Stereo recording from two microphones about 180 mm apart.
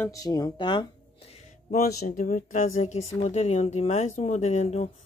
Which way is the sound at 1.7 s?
50° left (ahead or behind).